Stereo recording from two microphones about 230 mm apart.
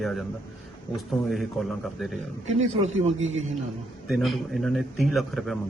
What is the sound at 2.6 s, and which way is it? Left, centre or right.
Speech, right.